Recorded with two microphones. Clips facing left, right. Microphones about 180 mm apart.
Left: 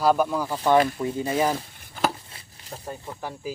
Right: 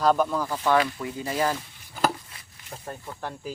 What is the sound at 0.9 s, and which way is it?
Speech, 25° left (ahead or behind).